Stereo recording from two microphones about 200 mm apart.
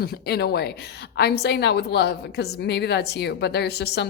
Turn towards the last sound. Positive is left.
turn(degrees=55)  # may be behind; listen again after turning